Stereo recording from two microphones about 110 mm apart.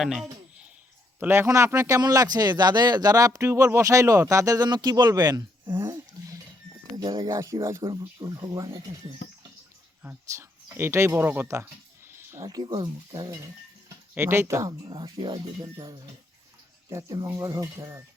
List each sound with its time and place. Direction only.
0.0 s speech: centre (ahead or behind)
1.2 s speech: 20° right (ahead or behind)
5.7 s a sound: 25° right (ahead or behind)
6.9 s speech: 35° right (ahead or behind)
7.9 s speech: 40° right (ahead or behind)
10.3 s speech: 25° right (ahead or behind)
12.1 s a sound: 20° right (ahead or behind)
12.5 s speech: 35° right (ahead or behind)
14.2 s speech: 20° right (ahead or behind); by 15.4 s 40° right (ahead or behind)
16.9 s speech: 35° right (ahead or behind)